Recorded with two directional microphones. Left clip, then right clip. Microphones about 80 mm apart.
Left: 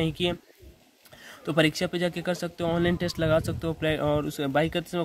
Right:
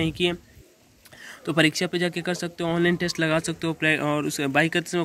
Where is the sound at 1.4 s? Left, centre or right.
Left.